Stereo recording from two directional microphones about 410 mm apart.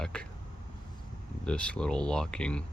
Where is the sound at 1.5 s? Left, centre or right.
Centre.